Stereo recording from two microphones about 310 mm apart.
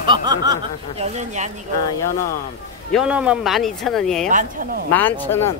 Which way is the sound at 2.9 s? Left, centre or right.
Centre.